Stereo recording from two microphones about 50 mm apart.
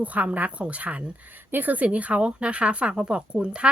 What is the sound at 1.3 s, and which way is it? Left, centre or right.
A woman's voice, right.